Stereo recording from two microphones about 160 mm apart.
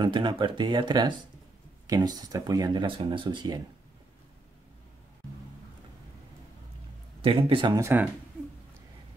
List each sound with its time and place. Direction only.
0.0 s speech: 30° right (ahead or behind)
7.2 s speech: 35° right (ahead or behind)
7.8 s speech: 10° right (ahead or behind)